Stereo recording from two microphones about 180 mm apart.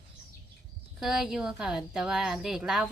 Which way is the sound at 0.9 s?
5° right (ahead or behind).